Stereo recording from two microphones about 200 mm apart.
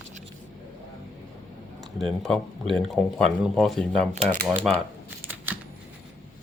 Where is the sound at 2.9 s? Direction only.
Centre (ahead or behind).